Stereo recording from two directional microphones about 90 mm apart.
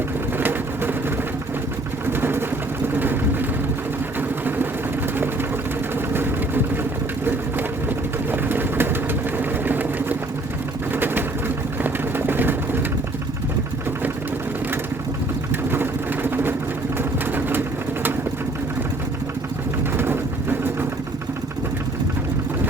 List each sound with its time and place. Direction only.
0.3 s vehicle: 20° right (ahead or behind)
2.0 s a sound: 25° right (ahead or behind)
2.9 s vehicle: 20° right (ahead or behind)
4.2 s sewing machine: 20° right (ahead or behind)
7.9 s vehicle: 20° right (ahead or behind)
9.4 s a sound: 20° right (ahead or behind)
10.9 s vehicle: 25° right (ahead or behind)
15.7 s vehicle: 25° right (ahead or behind)
20.0 s pigeon: 25° right (ahead or behind)